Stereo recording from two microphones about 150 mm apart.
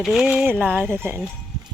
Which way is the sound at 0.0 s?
5° right (ahead or behind).